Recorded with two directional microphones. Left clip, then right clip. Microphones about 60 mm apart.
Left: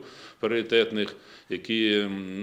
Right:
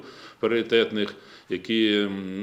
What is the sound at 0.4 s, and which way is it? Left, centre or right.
Speech, left.